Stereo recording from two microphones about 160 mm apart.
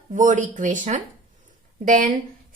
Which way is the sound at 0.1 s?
50° right (ahead or behind).